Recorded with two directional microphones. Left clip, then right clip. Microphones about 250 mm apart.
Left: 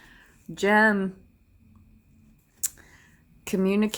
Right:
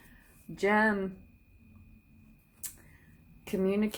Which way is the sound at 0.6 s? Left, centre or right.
Left.